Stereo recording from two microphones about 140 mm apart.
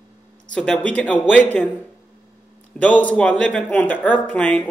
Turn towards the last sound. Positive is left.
turn(degrees=10)  # may be behind; listen again after turning